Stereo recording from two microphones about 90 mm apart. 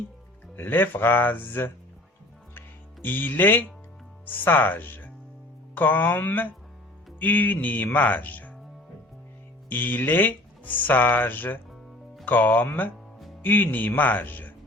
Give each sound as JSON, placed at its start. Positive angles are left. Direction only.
{"t": 0.5, "sound": "speech", "side_deg": 25}
{"t": 2.6, "sound": "music", "side_deg": 20}
{"t": 4.3, "sound": "speech", "side_deg": 20}
{"t": 9.6, "sound": "speech", "side_deg": 20}